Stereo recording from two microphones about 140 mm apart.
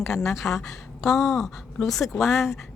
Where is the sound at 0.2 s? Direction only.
20° left (ahead or behind).